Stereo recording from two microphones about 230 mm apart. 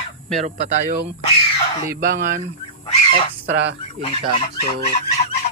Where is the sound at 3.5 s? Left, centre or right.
Right.